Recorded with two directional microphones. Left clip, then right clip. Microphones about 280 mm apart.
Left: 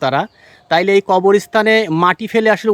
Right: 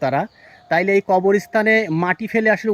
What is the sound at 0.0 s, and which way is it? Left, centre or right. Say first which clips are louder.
Speech: left 4 dB; centre.